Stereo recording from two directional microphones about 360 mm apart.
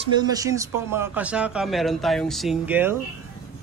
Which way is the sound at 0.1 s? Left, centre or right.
Centre.